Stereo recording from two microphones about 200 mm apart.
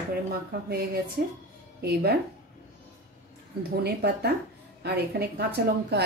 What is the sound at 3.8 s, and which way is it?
A woman's voice, 55° right (ahead or behind).